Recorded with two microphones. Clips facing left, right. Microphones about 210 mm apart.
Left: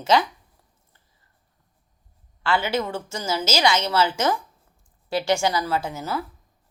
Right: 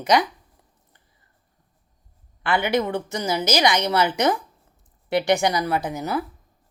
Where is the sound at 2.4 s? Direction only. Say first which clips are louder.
Right 2 dB; 20° right (ahead or behind).